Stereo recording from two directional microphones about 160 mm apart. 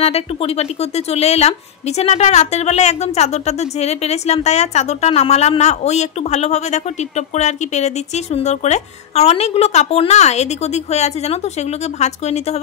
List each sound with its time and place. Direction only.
0.0 s speech: 40° left (ahead or behind)